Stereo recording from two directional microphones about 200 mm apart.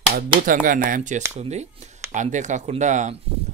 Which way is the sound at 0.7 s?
45° right (ahead or behind).